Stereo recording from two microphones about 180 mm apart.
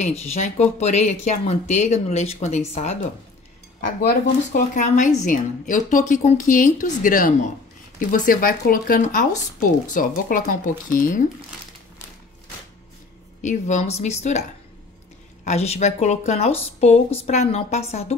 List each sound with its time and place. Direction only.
0.0 s speech: 35° left (ahead or behind)
4.6 s speech: 45° left (ahead or behind)
13.4 s speech: 40° left (ahead or behind)
15.4 s speech: 35° left (ahead or behind)